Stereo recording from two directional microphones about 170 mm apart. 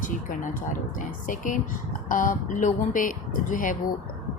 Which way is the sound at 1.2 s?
50° left (ahead or behind).